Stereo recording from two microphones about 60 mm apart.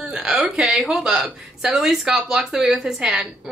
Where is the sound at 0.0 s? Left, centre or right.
Centre.